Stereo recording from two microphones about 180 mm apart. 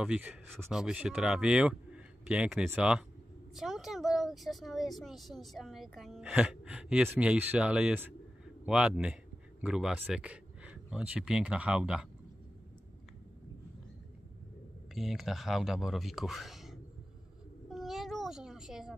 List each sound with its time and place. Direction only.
0.0 s speech: 5° right (ahead or behind)
15.0 s speech: centre (ahead or behind)
17.6 s a sound: centre (ahead or behind)